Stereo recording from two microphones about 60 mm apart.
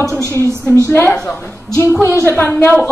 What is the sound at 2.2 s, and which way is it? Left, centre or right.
Speech, left.